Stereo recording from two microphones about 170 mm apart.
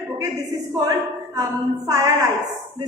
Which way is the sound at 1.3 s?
20° right (ahead or behind).